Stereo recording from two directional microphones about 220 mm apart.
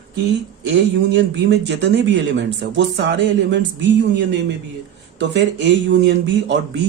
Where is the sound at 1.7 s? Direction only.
55° right (ahead or behind).